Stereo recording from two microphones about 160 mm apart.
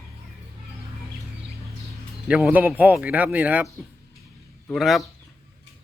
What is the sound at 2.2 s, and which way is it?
Speech, 5° right (ahead or behind).